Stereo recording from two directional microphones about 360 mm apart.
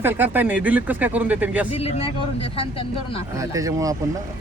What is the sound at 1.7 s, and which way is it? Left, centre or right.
Speech, centre.